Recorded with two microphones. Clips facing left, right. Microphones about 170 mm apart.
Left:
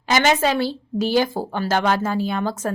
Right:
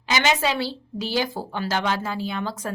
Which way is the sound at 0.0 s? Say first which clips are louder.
Left 4 dB; 50° left (ahead or behind).